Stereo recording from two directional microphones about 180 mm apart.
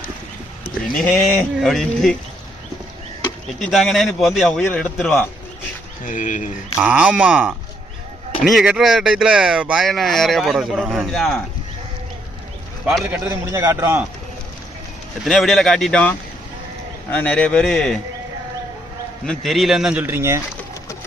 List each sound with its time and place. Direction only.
0.9 s speech: 5° left (ahead or behind)
3.6 s speech: centre (ahead or behind)
6.1 s speech: 45° left (ahead or behind)
6.7 s speech: 5° right (ahead or behind)
12.8 s a man's voice: 5° right (ahead or behind)
13.4 s a man's voice: 15° right (ahead or behind)
15.2 s speech: centre (ahead or behind)
19.2 s speech: 5° left (ahead or behind); by 20.4 s 15° right (ahead or behind)